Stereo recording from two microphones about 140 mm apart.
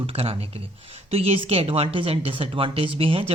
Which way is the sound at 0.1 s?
45° right (ahead or behind).